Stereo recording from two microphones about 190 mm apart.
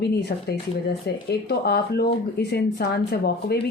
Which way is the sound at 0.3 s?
50° left (ahead or behind).